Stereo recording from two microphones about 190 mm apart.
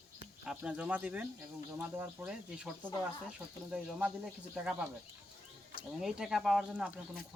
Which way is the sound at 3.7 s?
5° right (ahead or behind).